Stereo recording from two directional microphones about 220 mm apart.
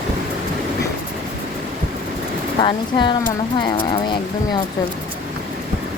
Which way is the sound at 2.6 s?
20° left (ahead or behind).